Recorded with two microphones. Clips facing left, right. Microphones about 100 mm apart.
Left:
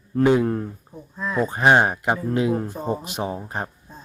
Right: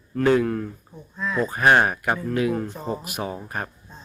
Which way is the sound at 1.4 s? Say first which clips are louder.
Left 1 dB; 20° left (ahead or behind).